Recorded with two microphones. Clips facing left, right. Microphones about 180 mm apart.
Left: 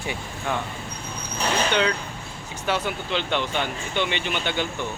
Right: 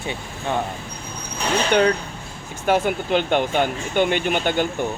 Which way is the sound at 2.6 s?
50° right (ahead or behind).